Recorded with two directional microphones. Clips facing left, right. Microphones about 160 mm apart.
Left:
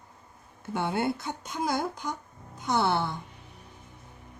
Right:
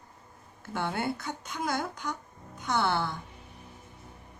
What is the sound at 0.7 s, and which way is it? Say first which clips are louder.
Speech: left 3 dB; 20° left (ahead or behind).